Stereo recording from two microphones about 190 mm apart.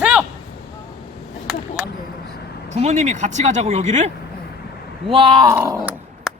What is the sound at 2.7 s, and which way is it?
Speech, 35° right (ahead or behind).